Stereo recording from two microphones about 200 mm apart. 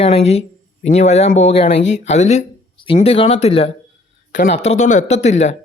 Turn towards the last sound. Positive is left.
turn(degrees=35)  # may be behind; listen again after turning